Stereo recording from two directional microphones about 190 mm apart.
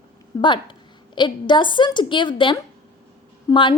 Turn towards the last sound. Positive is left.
turn(degrees=25)  # may be behind; listen again after turning